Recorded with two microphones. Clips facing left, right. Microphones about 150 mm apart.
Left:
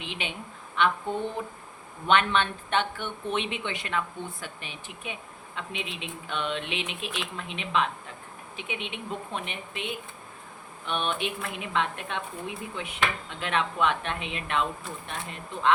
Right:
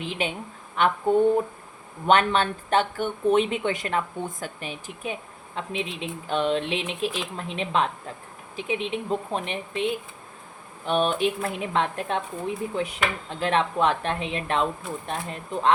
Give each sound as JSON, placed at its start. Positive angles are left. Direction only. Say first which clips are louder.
{"t": 0.0, "sound": "speech", "louder": "right 7 dB", "side_deg": -40}
{"t": 2.0, "sound": "speech", "louder": "right 3 dB", "side_deg": -40}